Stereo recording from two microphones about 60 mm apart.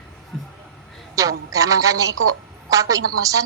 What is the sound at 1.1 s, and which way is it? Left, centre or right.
A woman's voice, right.